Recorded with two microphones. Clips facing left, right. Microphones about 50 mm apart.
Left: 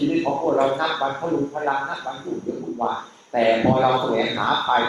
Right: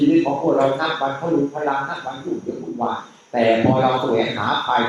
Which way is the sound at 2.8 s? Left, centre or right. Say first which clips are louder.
Right 1 dB; centre.